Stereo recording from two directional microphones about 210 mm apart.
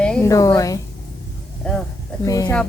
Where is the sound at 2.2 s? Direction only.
15° left (ahead or behind).